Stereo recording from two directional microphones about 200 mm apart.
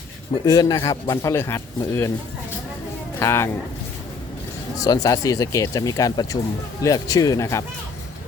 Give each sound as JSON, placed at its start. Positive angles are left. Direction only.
{"t": 0.4, "sound": "a man's voice", "side_deg": 15}
{"t": 3.2, "sound": "a man's voice", "side_deg": 15}
{"t": 4.8, "sound": "a man's voice", "side_deg": 15}